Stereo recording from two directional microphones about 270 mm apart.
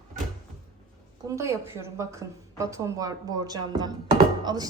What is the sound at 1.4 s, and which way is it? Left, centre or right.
A woman's voice, centre.